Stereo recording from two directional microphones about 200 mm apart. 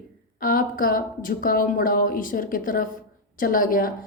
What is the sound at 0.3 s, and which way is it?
A woman's voice, 45° left (ahead or behind).